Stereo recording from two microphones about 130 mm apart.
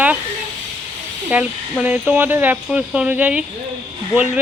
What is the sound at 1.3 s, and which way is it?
Speech, 10° right (ahead or behind).